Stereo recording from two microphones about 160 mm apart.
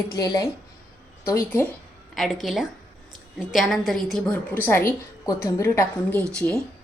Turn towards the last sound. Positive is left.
turn(degrees=5)  # may be behind; listen again after turning